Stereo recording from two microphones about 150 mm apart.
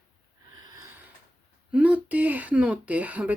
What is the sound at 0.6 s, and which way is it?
Gasp, 25° right (ahead or behind).